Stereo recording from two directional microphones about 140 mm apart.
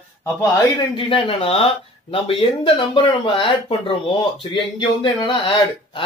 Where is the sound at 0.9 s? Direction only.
40° left (ahead or behind).